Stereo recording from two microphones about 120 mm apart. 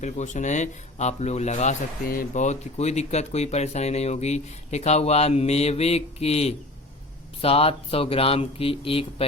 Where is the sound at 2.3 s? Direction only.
80° left.